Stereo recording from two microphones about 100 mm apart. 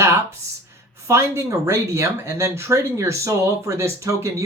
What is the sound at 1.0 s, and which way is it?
Speech, 30° right (ahead or behind).